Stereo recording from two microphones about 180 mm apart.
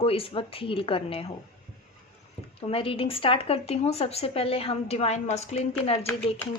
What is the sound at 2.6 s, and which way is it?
Speech, 30° left (ahead or behind).